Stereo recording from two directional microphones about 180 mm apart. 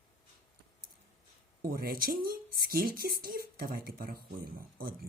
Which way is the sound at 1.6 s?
55° right (ahead or behind).